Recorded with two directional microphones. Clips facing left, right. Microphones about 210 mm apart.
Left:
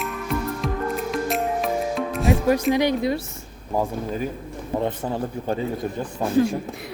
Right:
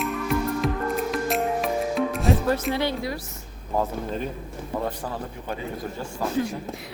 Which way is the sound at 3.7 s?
10° left (ahead or behind).